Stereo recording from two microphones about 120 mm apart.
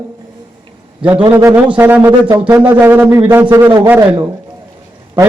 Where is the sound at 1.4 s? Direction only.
25° right (ahead or behind).